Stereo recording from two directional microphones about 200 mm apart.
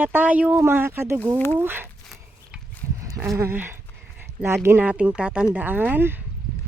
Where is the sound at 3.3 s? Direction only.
10° right (ahead or behind).